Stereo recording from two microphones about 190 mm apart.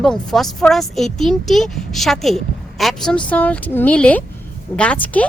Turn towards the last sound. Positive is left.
turn(degrees=10)  # may be behind; listen again after turning